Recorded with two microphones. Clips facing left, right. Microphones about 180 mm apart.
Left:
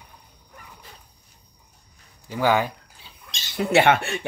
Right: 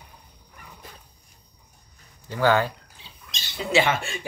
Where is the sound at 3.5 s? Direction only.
60° left (ahead or behind).